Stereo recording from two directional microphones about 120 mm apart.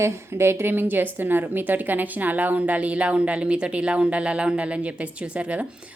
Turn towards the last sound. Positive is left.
turn(degrees=-10)  # may be behind; listen again after turning